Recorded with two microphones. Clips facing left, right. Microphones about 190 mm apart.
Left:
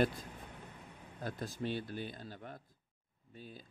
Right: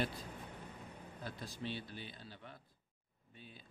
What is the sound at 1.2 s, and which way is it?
Speech, 45° left (ahead or behind).